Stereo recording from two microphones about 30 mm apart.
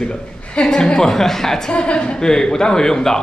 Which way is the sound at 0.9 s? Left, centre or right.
Centre.